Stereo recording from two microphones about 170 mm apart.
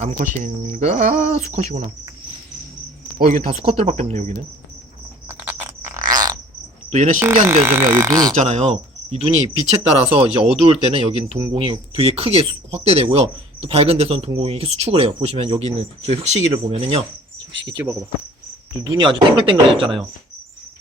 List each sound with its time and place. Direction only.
0.0 s cricket: 45° right (ahead or behind)
3.2 s speech: 50° right (ahead or behind)
5.3 s a sound: 10° right (ahead or behind)
6.9 s cricket: 45° right (ahead or behind)
7.4 s speech: 15° right (ahead or behind)
8.3 s cricket: 40° right (ahead or behind)
10.0 s speech: 35° right (ahead or behind)
17.5 s insect: 90° right
18.9 s speech: 30° right (ahead or behind)